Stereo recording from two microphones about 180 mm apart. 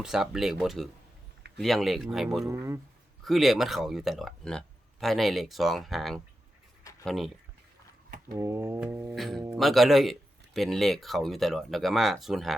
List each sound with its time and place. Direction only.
0.0 s speech: 5° right (ahead or behind)
2.5 s music: 15° right (ahead or behind)
3.2 s speech: centre (ahead or behind)
8.4 s music: 15° right (ahead or behind)
9.1 s speech: centre (ahead or behind)